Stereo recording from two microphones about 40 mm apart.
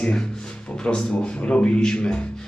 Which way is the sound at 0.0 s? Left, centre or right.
Left.